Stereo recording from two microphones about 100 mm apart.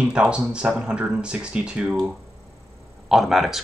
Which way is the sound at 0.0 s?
10° right (ahead or behind).